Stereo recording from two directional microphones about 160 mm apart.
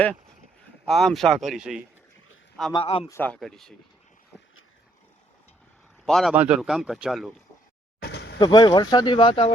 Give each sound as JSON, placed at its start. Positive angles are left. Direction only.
{"t": 0.9, "sound": "speech", "side_deg": 0}
{"t": 2.7, "sound": "speech", "side_deg": 40}
{"t": 3.1, "sound": "speech", "side_deg": 10}
{"t": 6.1, "sound": "speech", "side_deg": 0}
{"t": 8.0, "sound": "a sound", "side_deg": 90}
{"t": 8.4, "sound": "speech", "side_deg": 30}